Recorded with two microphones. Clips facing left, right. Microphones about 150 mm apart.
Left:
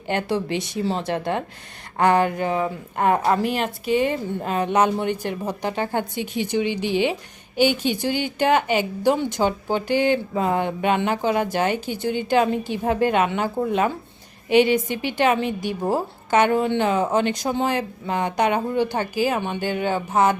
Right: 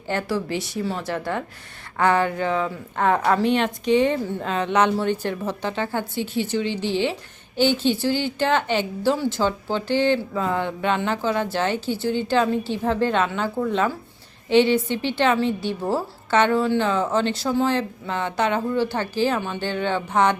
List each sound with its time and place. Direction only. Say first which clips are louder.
0.1 s a woman's voice: left 1 dB; 20° left (ahead or behind)